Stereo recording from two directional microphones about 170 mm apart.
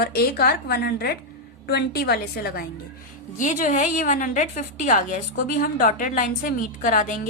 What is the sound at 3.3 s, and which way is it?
A woman's voice, 50° left (ahead or behind).